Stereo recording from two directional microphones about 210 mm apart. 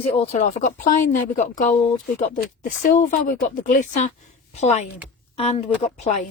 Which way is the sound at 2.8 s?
40° left (ahead or behind).